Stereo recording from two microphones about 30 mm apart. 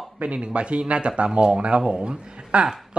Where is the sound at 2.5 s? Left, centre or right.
Right.